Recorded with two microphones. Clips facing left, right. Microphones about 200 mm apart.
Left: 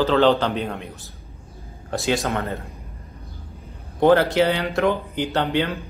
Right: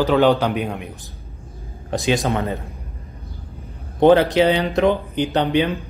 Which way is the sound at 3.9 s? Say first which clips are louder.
Right 3 dB; 20° right (ahead or behind).